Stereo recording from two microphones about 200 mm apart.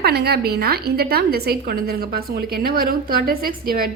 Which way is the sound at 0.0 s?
50° right (ahead or behind).